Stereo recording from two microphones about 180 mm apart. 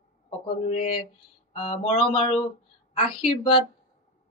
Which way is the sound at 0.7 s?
35° left (ahead or behind).